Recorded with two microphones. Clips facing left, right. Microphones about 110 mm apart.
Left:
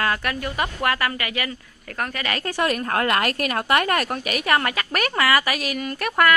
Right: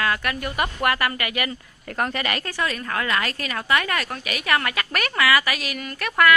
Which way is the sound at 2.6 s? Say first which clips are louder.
Left 7 dB; 55° left (ahead or behind).